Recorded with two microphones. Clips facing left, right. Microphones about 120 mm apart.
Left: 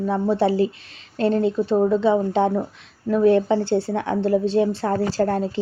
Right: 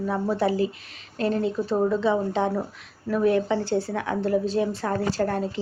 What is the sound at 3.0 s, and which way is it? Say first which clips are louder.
Speech: left 5 dB; 30° left (ahead or behind).